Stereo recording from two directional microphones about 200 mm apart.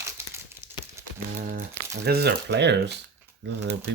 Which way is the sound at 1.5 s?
50° right (ahead or behind).